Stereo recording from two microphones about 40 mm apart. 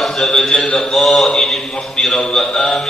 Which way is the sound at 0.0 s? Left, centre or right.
Centre.